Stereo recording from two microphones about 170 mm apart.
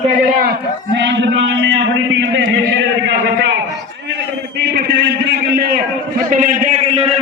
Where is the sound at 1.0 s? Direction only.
90° right.